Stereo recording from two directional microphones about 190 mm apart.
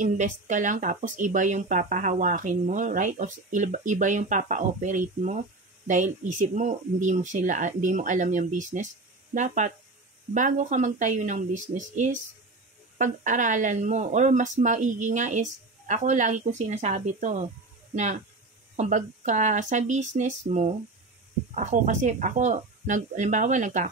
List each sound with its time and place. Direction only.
0.0 s speech: 40° right (ahead or behind)